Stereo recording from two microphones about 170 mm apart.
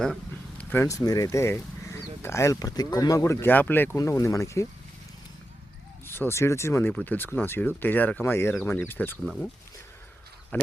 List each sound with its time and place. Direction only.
0.6 s speech: 15° left (ahead or behind)
6.1 s speech: 15° left (ahead or behind)
9.2 s speech: centre (ahead or behind)
10.5 s speech: 10° left (ahead or behind)